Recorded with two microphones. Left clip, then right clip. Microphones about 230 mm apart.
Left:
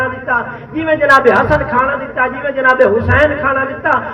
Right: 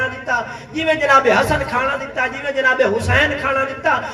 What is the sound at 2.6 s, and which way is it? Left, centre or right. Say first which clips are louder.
Speech: left 6 dB; right.